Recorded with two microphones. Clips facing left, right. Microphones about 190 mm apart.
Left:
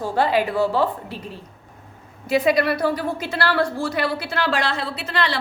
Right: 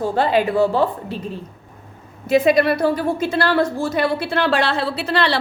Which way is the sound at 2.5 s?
25° right (ahead or behind).